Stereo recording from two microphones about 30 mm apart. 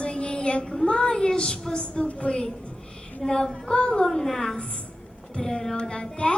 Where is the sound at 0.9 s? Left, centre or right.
Left.